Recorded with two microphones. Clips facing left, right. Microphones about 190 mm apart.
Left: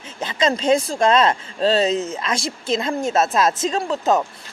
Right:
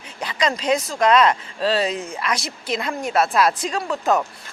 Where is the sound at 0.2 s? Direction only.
25° left (ahead or behind).